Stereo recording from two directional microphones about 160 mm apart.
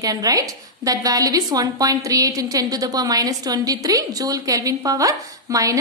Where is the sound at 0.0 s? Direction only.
20° right (ahead or behind).